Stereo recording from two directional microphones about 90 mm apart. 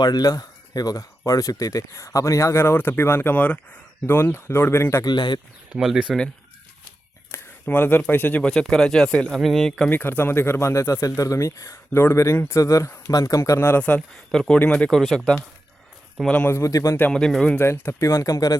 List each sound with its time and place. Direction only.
0.0 s speech: 45° left (ahead or behind); by 5.0 s 30° left (ahead or behind)
5.0 s speech: 55° left (ahead or behind)
5.7 s speech: 5° right (ahead or behind)
7.6 s speech: 20° left (ahead or behind)
8.4 s speech: 5° left (ahead or behind)
9.9 s speech: 20° left (ahead or behind)
13.7 s speech: 15° left (ahead or behind)
14.3 s speech: 5° left (ahead or behind)
16.5 s speech: 35° left (ahead or behind)
17.1 s speech: 5° left (ahead or behind)
17.6 s speech: 30° left (ahead or behind)